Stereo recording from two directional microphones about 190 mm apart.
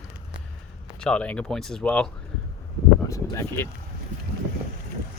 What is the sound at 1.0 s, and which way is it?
Speech, 5° left (ahead or behind).